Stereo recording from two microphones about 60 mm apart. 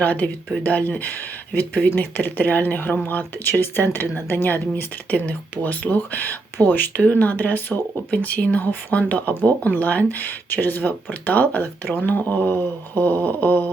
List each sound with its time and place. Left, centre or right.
0.0 s speech: left